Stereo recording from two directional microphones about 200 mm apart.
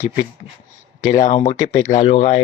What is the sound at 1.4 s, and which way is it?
Speech, 35° left (ahead or behind).